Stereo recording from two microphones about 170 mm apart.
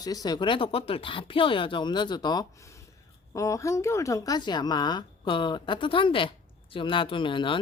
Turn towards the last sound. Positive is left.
turn(degrees=30)  # may be behind; listen again after turning